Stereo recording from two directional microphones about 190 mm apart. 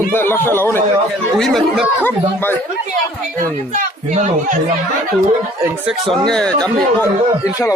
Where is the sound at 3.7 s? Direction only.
40° right (ahead or behind).